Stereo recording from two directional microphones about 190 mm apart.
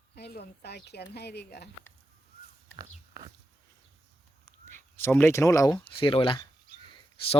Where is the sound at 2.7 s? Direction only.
25° right (ahead or behind).